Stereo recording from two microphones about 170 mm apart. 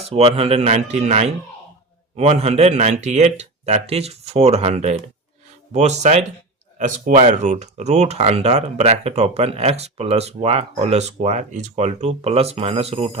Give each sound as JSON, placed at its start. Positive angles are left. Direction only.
{"t": 0.1, "sound": "speech", "side_deg": -35}